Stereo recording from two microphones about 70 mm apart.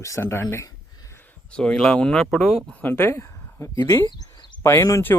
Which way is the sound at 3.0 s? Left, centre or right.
Left.